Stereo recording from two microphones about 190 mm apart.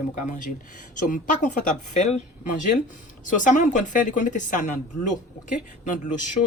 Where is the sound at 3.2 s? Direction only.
40° left (ahead or behind).